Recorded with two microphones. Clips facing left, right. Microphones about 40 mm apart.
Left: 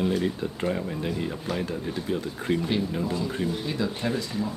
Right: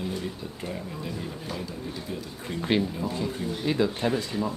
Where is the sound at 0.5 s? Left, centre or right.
Left.